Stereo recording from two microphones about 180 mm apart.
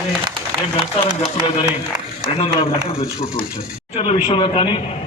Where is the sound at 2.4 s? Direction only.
30° left (ahead or behind).